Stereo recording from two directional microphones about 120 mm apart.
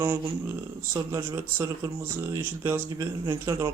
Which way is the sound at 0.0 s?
20° right (ahead or behind).